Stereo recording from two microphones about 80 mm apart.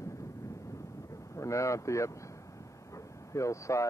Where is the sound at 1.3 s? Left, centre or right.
Left.